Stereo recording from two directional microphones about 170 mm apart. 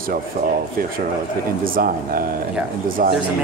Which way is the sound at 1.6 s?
55° right (ahead or behind).